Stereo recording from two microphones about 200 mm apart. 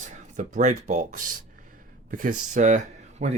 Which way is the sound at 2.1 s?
40° right (ahead or behind).